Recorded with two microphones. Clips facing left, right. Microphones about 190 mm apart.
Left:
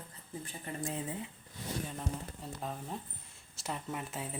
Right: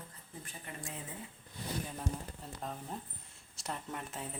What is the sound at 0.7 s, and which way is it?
Speech, 30° left (ahead or behind).